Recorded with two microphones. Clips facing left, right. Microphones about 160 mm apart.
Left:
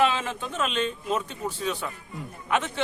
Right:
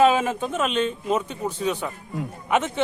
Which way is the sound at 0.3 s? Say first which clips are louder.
Right 7 dB; 45° right (ahead or behind).